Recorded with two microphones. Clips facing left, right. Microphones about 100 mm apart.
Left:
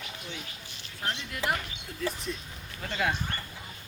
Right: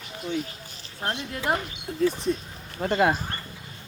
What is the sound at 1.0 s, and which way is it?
Speech, 45° right (ahead or behind).